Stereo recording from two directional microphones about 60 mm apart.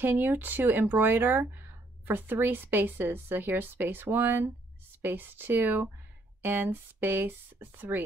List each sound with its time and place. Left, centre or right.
0.0 s speech: right